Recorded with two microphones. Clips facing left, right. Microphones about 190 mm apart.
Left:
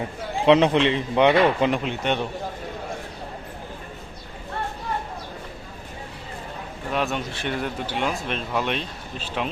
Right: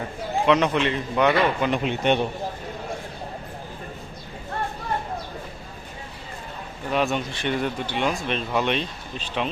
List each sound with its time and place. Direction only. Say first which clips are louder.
0.4 s speech: left 4 dB; 25° left (ahead or behind)
1.8 s speech: right 3 dB; 20° right (ahead or behind)
6.9 s speech: right 2 dB; centre (ahead or behind)